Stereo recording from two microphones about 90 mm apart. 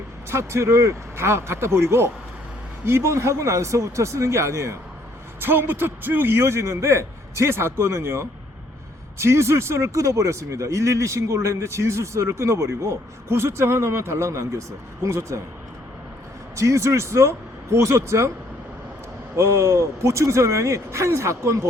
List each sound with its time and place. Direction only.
0.3 s a man's voice: 30° right (ahead or behind)
16.6 s speech: 35° right (ahead or behind)
19.4 s speech: 35° right (ahead or behind)